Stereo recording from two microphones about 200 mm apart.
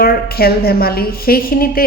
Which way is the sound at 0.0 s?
50° left (ahead or behind).